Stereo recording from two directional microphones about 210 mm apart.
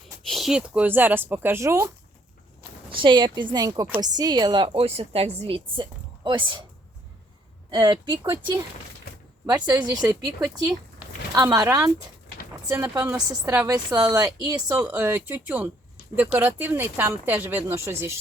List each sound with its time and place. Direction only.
0.3 s a woman's voice: centre (ahead or behind)
2.9 s a woman's voice: 25° right (ahead or behind)
7.7 s a woman's voice: 20° right (ahead or behind)
9.5 s a woman's voice: 20° right (ahead or behind)